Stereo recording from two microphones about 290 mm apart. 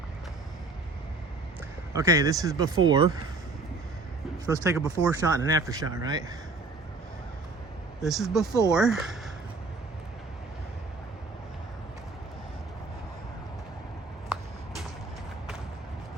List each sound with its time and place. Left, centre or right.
1.9 s speech: centre
4.4 s speech: centre
8.0 s speech: centre
14.3 s a sound: centre